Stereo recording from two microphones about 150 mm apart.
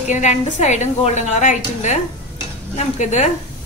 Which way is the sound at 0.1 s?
50° left (ahead or behind).